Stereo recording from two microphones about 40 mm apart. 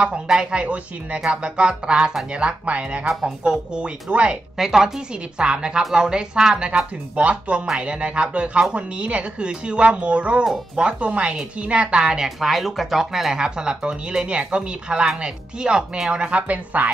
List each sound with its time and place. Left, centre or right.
0.5 s speech: right
3.3 s speech: right
4.6 s speech: centre
12.4 s speech: centre; by 16.9 s right